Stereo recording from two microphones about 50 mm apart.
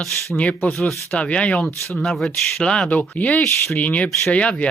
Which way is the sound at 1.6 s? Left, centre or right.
Centre.